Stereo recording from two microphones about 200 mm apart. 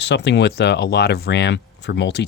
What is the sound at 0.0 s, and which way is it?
Speech, 60° left (ahead or behind).